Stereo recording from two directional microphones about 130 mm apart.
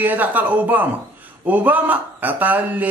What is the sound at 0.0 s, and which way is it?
Speech, 15° right (ahead or behind).